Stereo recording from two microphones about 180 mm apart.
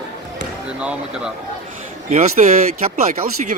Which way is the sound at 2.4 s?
45° right (ahead or behind).